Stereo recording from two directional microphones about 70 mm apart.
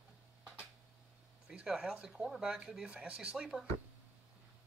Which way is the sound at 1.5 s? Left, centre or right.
Centre.